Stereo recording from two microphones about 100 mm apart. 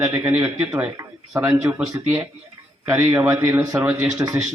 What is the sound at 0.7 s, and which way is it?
Speech, 30° right (ahead or behind).